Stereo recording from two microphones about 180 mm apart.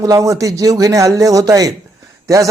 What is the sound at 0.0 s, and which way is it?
Speech, 20° right (ahead or behind).